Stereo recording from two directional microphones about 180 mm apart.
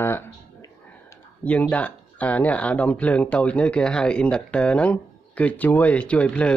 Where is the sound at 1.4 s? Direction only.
10° left (ahead or behind).